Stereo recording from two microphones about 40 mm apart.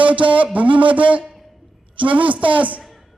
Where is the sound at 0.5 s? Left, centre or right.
Right.